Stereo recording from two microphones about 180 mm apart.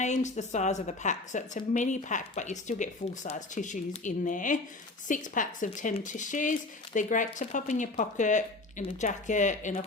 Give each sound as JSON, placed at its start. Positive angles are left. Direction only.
{"t": 0.0, "sound": "a woman's voice", "side_deg": 40}